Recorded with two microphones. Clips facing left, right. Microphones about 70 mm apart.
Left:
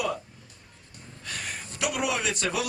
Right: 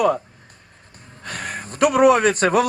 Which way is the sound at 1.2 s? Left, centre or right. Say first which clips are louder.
Right 7 dB; right.